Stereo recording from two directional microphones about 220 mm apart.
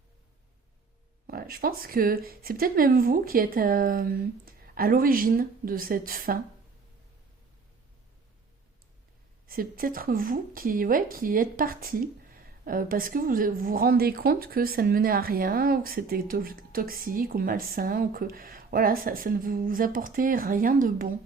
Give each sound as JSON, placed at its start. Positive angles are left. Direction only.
{"t": 1.3, "sound": "a woman's voice", "side_deg": -40}
{"t": 9.5, "sound": "a woman's voice", "side_deg": -40}